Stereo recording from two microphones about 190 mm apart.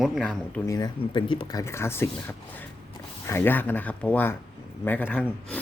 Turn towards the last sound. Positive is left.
turn(degrees=10)  # may be behind; listen again after turning